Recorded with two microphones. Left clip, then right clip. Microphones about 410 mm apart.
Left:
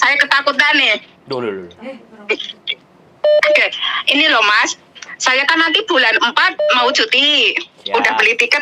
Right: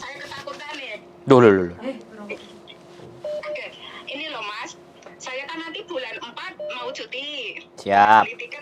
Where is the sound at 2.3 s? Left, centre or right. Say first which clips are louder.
Left 16 dB; left.